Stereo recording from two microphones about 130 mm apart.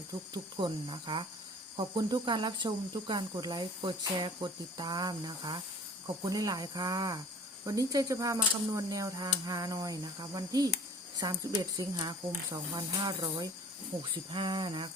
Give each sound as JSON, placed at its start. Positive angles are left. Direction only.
{"t": 0.5, "sound": "speech", "side_deg": -40}